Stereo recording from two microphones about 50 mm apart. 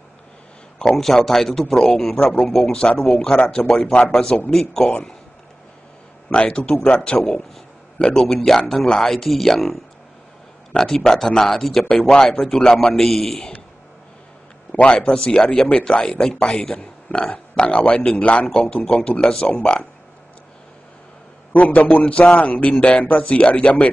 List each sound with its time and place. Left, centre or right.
0.7 s speech: centre
6.3 s speech: left; by 9.8 s centre
10.8 s speech: centre
11.9 s speech: left
12.4 s speech: centre
14.7 s a man's voice: left
21.5 s a man's voice: left